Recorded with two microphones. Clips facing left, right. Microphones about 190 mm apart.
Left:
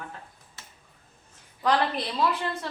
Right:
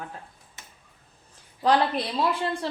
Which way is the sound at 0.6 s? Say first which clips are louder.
Right 1 dB; 15° right (ahead or behind).